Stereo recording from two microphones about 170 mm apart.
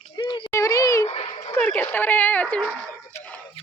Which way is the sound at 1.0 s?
30° left (ahead or behind).